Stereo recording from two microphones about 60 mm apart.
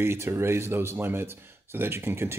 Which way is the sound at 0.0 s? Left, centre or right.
Right.